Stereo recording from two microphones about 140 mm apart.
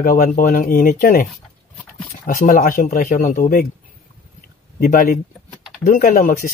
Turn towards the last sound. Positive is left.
turn(degrees=85)